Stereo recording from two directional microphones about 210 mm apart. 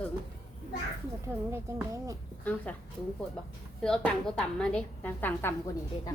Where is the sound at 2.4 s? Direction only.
5° left (ahead or behind).